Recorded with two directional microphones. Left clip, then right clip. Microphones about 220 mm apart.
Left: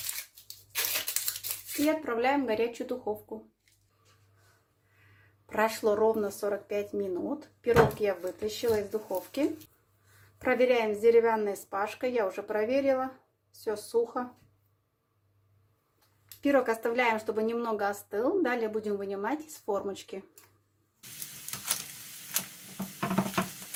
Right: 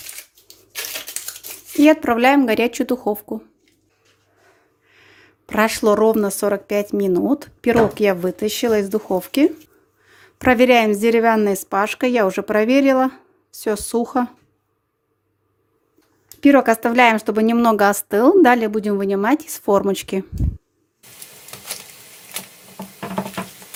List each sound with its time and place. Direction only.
1.8 s speech: 50° right (ahead or behind)
5.5 s speech: 45° right (ahead or behind)
16.4 s speech: 40° right (ahead or behind)